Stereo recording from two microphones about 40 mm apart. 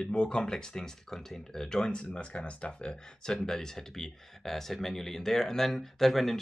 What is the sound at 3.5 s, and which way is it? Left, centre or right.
Speech, centre.